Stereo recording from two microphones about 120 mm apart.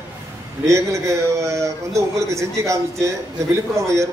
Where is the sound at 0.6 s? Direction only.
25° right (ahead or behind).